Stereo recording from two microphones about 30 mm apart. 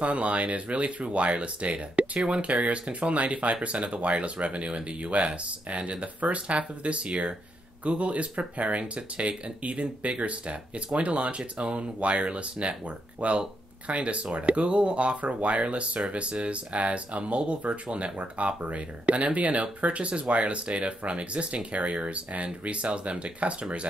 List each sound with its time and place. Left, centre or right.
0.0 s speech: right